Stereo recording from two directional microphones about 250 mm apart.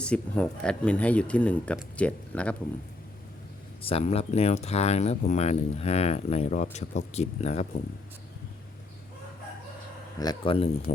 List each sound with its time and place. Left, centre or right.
0.0 s speech: centre
3.8 s speech: left
10.2 s speech: centre